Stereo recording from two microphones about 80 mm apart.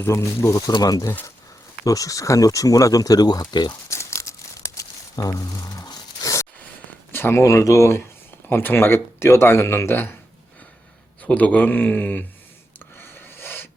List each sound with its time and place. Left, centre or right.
0.0 s speech: left
0.8 s speech: left
3.8 s crumpling: left
7.1 s a sound: left
7.4 s speech: left
8.4 s speech: left
11.2 s speech: centre
13.0 s rub: left